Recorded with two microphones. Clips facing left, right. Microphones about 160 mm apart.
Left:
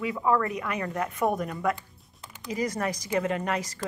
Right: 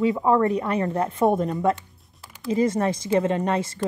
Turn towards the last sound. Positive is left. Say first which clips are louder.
# right 5 dB
turn(degrees=-25)  # may be behind; listen again after turning